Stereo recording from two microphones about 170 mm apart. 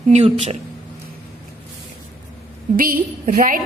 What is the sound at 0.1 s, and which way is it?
Speech, 40° right (ahead or behind).